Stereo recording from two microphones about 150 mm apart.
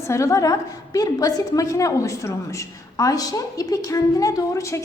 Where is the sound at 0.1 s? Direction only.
20° left (ahead or behind).